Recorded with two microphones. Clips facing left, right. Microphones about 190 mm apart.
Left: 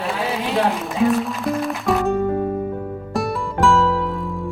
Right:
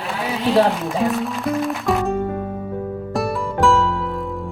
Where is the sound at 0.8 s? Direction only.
Centre (ahead or behind).